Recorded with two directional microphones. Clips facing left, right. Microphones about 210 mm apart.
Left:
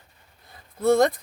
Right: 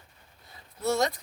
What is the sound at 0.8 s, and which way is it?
Speech, 55° left (ahead or behind).